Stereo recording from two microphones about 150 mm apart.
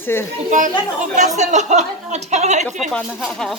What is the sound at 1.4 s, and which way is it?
Speech, 50° right (ahead or behind).